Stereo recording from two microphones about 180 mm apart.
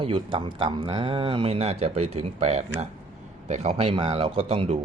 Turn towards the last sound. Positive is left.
turn(degrees=-35)  # may be behind; listen again after turning